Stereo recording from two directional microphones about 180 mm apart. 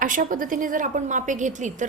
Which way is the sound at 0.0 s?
50° right (ahead or behind).